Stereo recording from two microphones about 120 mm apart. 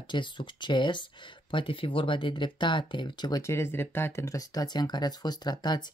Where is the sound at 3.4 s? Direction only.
20° left (ahead or behind).